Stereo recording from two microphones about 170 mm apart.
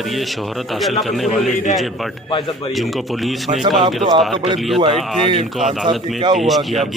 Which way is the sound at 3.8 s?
25° right (ahead or behind).